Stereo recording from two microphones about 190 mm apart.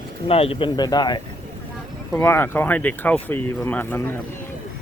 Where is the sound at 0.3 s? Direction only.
30° left (ahead or behind); by 4.1 s 10° left (ahead or behind).